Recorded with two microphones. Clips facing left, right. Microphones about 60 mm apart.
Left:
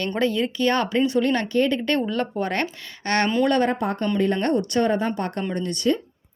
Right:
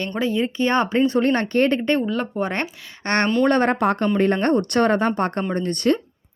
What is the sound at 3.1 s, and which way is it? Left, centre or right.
Speech, right.